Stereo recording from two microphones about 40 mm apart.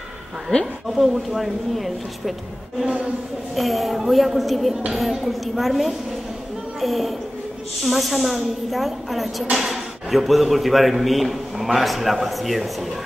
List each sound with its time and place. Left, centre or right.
0.9 s a man's voice: centre
2.8 s a sound: centre
3.5 s a man's voice: centre